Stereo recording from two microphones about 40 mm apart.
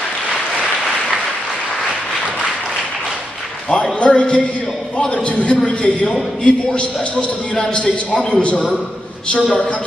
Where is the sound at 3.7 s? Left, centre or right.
Left.